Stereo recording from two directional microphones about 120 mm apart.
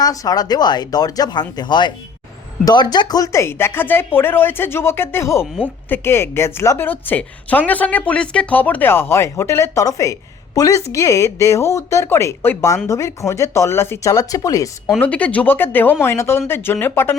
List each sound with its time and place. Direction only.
0.0 s speech: 30° left (ahead or behind)
15.0 s speech: 10° left (ahead or behind)